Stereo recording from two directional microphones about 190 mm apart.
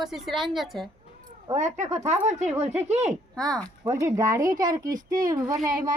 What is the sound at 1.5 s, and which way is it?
Speech, 40° right (ahead or behind).